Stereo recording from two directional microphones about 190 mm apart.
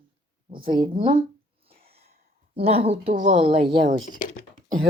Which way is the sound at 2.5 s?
30° right (ahead or behind).